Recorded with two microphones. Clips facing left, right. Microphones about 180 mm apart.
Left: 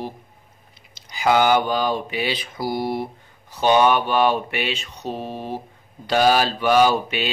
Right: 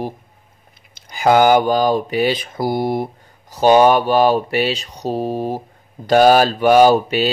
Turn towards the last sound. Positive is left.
turn(degrees=-40)  # may be behind; listen again after turning